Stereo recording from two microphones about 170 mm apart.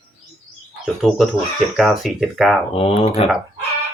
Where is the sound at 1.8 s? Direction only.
Centre (ahead or behind).